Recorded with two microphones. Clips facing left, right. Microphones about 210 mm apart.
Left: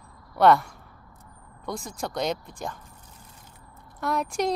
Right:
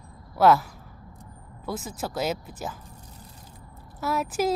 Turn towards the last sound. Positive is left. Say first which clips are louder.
# right 1 dB
turn(degrees=-5)  # may be behind; listen again after turning